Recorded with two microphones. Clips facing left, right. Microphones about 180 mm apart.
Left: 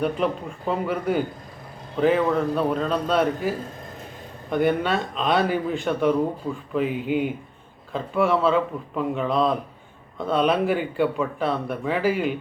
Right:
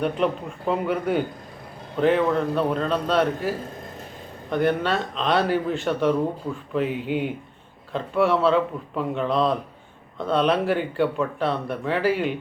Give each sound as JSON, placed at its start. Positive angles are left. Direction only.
{"t": 0.2, "sound": "speech", "side_deg": 0}
{"t": 4.5, "sound": "speech", "side_deg": 0}